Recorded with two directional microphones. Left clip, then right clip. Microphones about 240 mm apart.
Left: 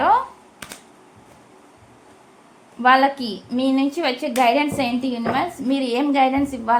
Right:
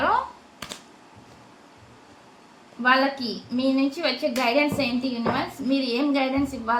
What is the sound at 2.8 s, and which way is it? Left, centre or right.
A woman's voice, left.